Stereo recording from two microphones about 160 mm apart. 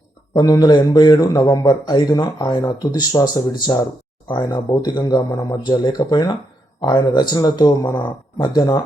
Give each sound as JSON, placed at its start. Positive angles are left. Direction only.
{"t": 0.3, "sound": "a man's voice", "side_deg": 25}